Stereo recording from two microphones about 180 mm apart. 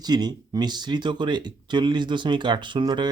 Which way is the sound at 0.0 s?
25° right (ahead or behind).